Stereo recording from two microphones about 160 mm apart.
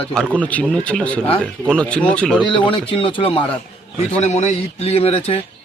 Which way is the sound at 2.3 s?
30° left (ahead or behind).